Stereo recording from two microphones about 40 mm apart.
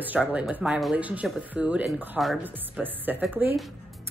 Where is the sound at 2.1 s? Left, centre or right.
Centre.